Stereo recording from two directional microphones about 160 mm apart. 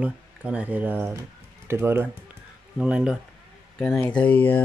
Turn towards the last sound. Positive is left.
turn(degrees=10)  # may be behind; listen again after turning